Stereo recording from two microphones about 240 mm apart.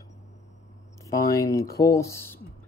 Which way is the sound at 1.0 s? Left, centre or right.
Centre.